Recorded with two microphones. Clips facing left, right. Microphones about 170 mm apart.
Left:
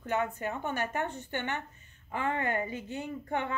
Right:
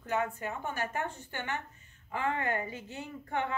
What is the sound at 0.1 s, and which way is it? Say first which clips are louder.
A woman's voice: left 1 dB; 25° left (ahead or behind).